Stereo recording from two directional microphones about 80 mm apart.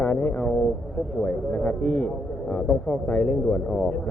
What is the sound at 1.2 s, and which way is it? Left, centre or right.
Speech, centre.